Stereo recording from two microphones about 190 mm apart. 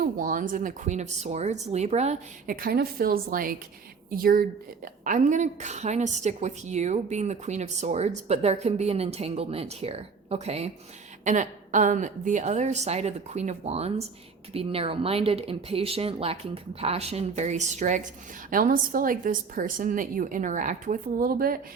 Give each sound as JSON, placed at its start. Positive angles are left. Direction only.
{"t": 0.0, "sound": "a woman's voice", "side_deg": -45}
{"t": 2.6, "sound": "a woman's voice", "side_deg": -55}